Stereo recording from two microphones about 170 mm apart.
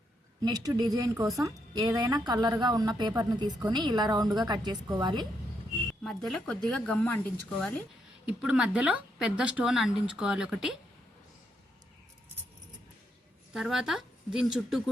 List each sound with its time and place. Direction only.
0.4 s a woman's voice: 20° right (ahead or behind)
6.0 s speech: centre (ahead or behind)
8.3 s speech: 5° right (ahead or behind)
13.5 s speech: centre (ahead or behind)